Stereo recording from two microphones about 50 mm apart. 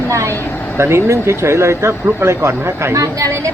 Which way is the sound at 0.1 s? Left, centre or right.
Right.